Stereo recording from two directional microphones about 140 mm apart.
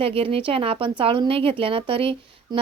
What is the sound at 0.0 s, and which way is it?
Speech, 40° right (ahead or behind).